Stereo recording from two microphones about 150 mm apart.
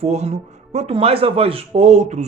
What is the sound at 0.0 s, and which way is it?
Speech, 45° right (ahead or behind).